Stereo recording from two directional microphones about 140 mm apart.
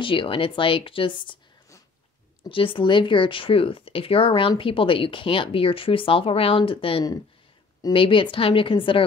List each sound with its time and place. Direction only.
0.0 s speech: 35° left (ahead or behind)
2.5 s speech: 40° left (ahead or behind)